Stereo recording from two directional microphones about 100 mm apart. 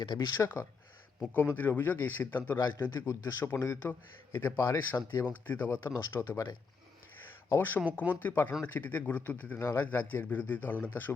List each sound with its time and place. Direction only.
0.0 s speech: 50° left (ahead or behind)
0.3 s a man's voice: 20° left (ahead or behind)
2.6 s speech: 45° left (ahead or behind)
2.9 s a man's voice: 30° left (ahead or behind)
7.5 s a man's voice: 20° left (ahead or behind)
9.6 s a man's voice: 30° left (ahead or behind)